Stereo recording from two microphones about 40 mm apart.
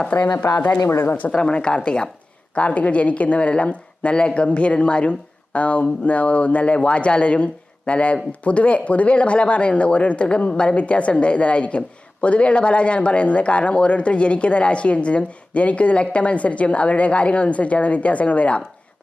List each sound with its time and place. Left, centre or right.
0.1 s speech: left
1.3 s a woman's voice: left
2.6 s a woman's voice: left